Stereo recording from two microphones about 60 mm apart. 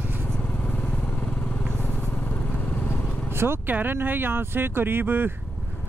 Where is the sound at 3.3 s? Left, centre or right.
Right.